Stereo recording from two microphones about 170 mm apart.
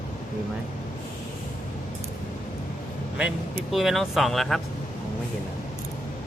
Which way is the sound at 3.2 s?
5° right (ahead or behind).